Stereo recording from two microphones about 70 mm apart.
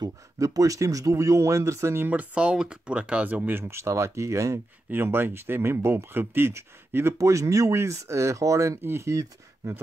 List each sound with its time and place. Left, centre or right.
0.0 s speech: right
2.0 s speech: centre; by 4.6 s right
4.9 s speech: right
7.2 s speech: right